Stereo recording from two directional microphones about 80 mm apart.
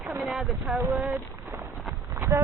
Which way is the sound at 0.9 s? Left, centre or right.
Centre.